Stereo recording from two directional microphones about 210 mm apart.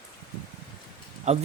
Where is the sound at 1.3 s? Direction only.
30° right (ahead or behind).